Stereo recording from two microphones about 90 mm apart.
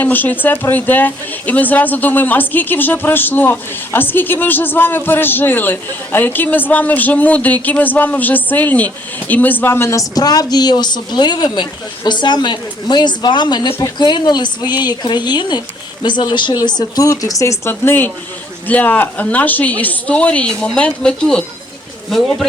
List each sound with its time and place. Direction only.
0.0 s speech: 20° left (ahead or behind)
10.2 s a woman's voice: 45° left (ahead or behind); by 21.4 s 10° left (ahead or behind)